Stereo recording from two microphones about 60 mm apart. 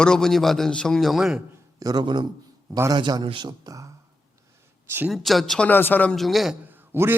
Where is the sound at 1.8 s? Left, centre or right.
Right.